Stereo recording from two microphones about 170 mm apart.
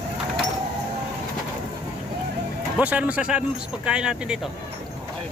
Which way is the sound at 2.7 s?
10° right (ahead or behind).